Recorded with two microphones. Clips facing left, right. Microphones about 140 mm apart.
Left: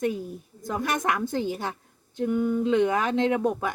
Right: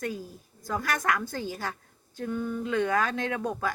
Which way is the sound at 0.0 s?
20° left (ahead or behind).